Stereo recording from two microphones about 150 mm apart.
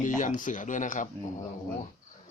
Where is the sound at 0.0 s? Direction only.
60° left (ahead or behind).